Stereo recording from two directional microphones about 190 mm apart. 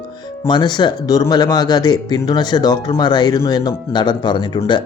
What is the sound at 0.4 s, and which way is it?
Speech, 25° left (ahead or behind).